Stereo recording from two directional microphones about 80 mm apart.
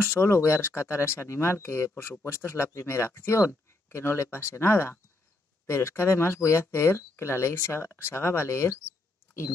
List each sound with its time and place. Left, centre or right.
0.0 s speech: left